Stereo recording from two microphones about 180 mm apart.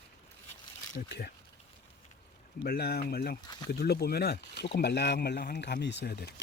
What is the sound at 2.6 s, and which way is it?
Speech, 60° left (ahead or behind).